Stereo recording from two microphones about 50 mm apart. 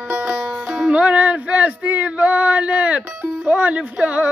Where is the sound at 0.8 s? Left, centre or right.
Right.